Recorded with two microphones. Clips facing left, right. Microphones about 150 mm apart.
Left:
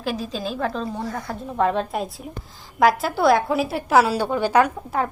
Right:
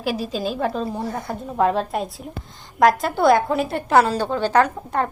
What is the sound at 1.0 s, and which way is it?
Speech, 20° right (ahead or behind).